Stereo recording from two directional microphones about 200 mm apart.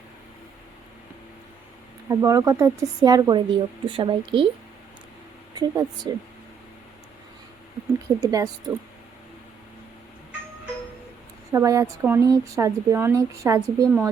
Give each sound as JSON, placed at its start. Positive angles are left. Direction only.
{"t": 2.0, "sound": "a woman's voice", "side_deg": -15}
{"t": 5.5, "sound": "a woman's voice", "side_deg": -20}
{"t": 8.2, "sound": "a woman's voice", "side_deg": -15}
{"t": 11.5, "sound": "speech", "side_deg": -15}